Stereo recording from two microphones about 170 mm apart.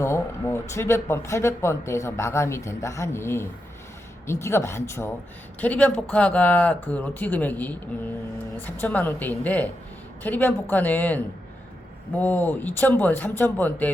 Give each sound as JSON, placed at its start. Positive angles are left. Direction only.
{"t": 0.0, "sound": "speech", "side_deg": 15}